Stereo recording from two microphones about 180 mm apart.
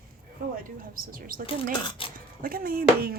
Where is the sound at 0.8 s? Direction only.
50° right (ahead or behind).